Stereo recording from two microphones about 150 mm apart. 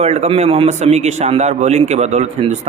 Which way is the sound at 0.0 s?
45° right (ahead or behind).